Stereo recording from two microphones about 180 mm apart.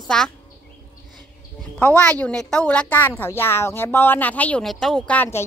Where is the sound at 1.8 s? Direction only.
10° left (ahead or behind).